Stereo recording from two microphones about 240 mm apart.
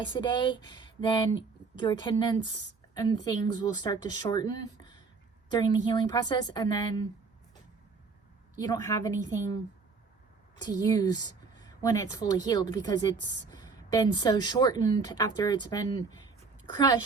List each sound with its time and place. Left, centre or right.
0.1 s a woman's voice: centre
8.5 s a woman's voice: centre
10.6 s a woman's voice: centre